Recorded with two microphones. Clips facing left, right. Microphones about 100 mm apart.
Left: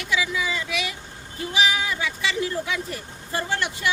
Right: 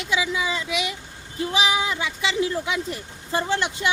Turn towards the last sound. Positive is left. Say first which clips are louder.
# right 2 dB
turn(degrees=-20)  # may be behind; listen again after turning